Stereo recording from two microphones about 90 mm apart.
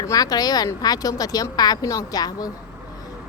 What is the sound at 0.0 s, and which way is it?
A woman's voice, 45° left (ahead or behind).